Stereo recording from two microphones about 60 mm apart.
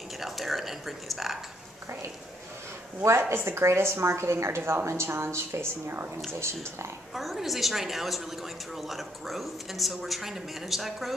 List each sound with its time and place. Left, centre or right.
0.2 s a sound: centre
3.0 s a woman's voice: right
6.3 s a woman's voice: right
7.2 s a woman's voice: centre